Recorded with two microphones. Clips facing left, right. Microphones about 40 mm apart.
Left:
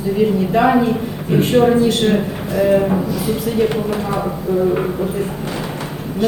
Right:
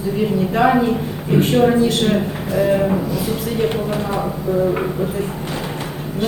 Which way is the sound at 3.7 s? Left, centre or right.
Centre.